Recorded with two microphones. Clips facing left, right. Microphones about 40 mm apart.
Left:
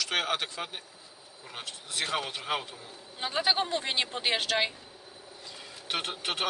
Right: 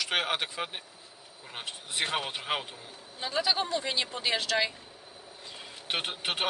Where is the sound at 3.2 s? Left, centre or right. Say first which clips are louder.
Left 1 dB; left.